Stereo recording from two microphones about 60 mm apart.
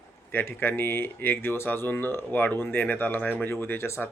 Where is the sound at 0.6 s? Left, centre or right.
Left.